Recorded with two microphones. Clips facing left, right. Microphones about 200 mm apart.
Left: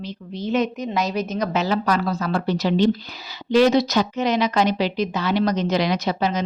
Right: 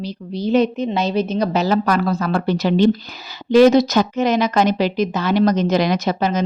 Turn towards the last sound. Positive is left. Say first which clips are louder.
# right 3 dB
turn(degrees=-50)  # may be behind; listen again after turning